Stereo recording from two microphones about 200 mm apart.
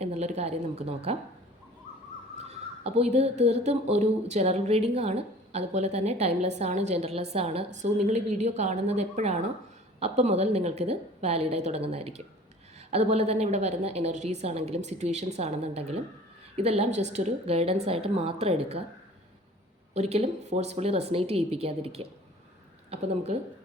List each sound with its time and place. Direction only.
0.0 s speech: 35° right (ahead or behind)
2.4 s speech: 30° right (ahead or behind)
19.9 s speech: 30° right (ahead or behind)